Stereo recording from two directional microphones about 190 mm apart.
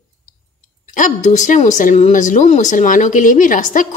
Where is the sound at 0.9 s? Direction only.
40° left (ahead or behind).